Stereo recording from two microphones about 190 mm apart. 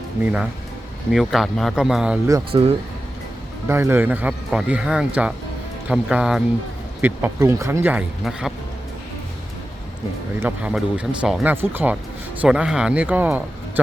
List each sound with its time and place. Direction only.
1.1 s speech: centre (ahead or behind)
2.5 s speech: 30° right (ahead or behind)
3.7 s speech: 10° right (ahead or behind)
10.4 s speech: 5° right (ahead or behind)